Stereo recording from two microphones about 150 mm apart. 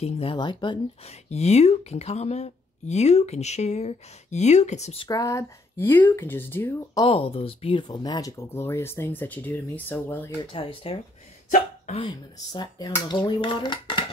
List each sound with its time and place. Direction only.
0.0 s speech: 40° left (ahead or behind)
1.3 s speech: 45° left (ahead or behind)
5.0 s speech: 25° left (ahead or behind)
7.0 s speech: 40° left (ahead or behind)
7.9 s speech: 25° left (ahead or behind)
10.5 s speech: 35° left (ahead or behind)
12.1 s speech: 25° left (ahead or behind)